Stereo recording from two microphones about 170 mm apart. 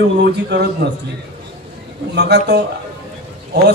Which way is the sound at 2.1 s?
80° right.